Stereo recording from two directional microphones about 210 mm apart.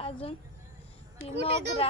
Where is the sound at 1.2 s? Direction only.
45° right (ahead or behind).